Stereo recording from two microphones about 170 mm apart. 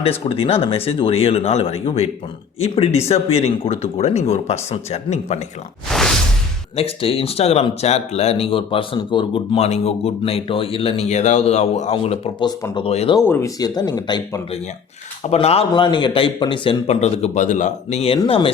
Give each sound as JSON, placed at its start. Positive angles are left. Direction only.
{"t": 0.0, "sound": "speech", "side_deg": 35}
{"t": 5.9, "sound": "whoosh", "side_deg": 0}
{"t": 6.7, "sound": "speech", "side_deg": 35}
{"t": 13.2, "sound": "speech", "side_deg": 10}
{"t": 13.6, "sound": "speech", "side_deg": 25}
{"t": 15.3, "sound": "speech", "side_deg": 35}